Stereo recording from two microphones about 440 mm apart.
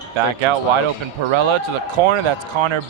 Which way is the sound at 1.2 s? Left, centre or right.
Right.